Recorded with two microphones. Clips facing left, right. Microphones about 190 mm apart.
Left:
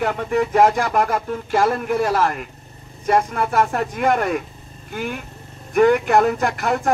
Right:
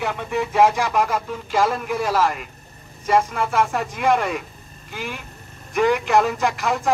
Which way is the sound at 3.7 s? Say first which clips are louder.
Left 1 dB; 55° left (ahead or behind).